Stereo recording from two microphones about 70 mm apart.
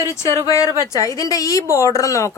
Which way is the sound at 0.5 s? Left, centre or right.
Left.